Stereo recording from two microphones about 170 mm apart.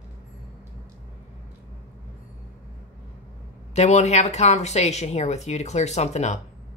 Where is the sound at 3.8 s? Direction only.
40° left (ahead or behind).